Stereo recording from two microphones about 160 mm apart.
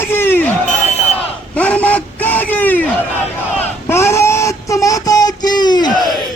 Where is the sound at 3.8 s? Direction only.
15° left (ahead or behind).